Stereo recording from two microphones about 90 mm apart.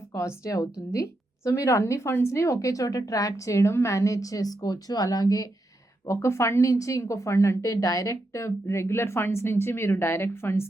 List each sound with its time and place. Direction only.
0.1 s a woman's voice: 35° left (ahead or behind)
6.1 s a woman's voice: 30° left (ahead or behind)